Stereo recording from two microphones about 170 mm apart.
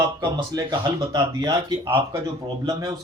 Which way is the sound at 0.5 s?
25° right (ahead or behind).